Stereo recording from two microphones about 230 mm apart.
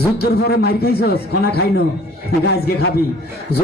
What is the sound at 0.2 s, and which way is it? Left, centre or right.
Speech, left.